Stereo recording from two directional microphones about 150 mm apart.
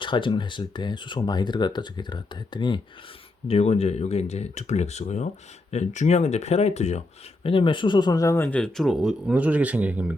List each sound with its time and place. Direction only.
0.0 s speech: 30° left (ahead or behind)
3.4 s speech: 40° left (ahead or behind)
7.4 s speech: 35° left (ahead or behind)
8.4 s speech: 5° left (ahead or behind); by 10.2 s 10° right (ahead or behind)